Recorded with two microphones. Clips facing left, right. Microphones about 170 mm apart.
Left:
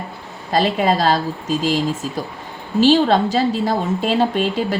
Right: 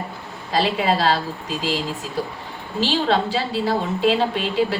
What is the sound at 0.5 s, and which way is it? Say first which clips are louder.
A woman's voice: left 3 dB; 45° left (ahead or behind).